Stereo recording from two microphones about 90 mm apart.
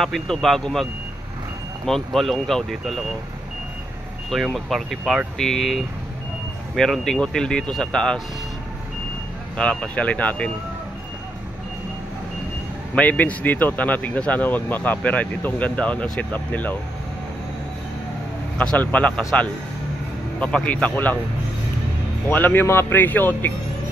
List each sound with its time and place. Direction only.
0.0 s speech: 5° left (ahead or behind)
1.9 s speech: 5° left (ahead or behind)
4.3 s speech: centre (ahead or behind)
9.6 s speech: 15° left (ahead or behind)
12.9 s speech: 15° left (ahead or behind)
18.6 s speech: 15° left (ahead or behind)
22.3 s a man's voice: 20° left (ahead or behind)